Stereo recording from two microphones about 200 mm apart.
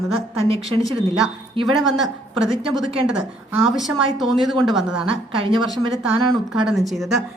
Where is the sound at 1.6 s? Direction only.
Centre (ahead or behind).